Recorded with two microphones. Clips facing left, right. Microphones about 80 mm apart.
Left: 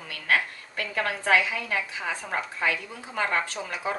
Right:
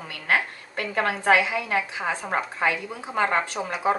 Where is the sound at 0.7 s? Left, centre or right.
Right.